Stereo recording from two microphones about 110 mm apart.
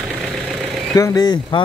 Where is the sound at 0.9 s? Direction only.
30° left (ahead or behind).